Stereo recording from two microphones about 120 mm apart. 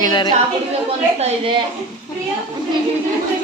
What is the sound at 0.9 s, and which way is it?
Speech, 60° right (ahead or behind).